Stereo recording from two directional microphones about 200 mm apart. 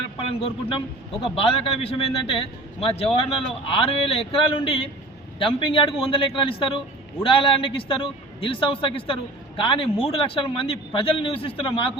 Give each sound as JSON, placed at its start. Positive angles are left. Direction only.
{"t": 0.2, "sound": "a man's voice", "side_deg": 30}